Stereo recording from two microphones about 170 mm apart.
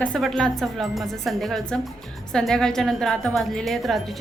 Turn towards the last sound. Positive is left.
turn(degrees=0)  # may be behind; listen again after turning